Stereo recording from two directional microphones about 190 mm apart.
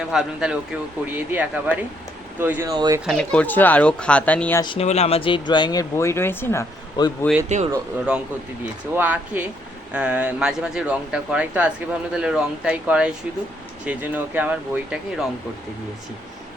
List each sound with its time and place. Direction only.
0.1 s speech: 5° right (ahead or behind); by 3.0 s 20° right (ahead or behind)
3.1 s speech: 5° left (ahead or behind)
4.6 s speech: 30° left (ahead or behind)
7.4 s speech: 35° right (ahead or behind)
9.0 s speech: 10° right (ahead or behind)